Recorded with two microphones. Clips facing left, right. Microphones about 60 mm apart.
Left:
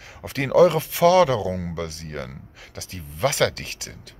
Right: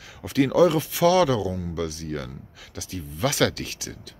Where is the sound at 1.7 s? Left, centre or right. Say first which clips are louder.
Right 1 dB; left.